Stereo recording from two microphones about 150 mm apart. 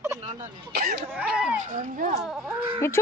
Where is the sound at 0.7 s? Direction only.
90° right.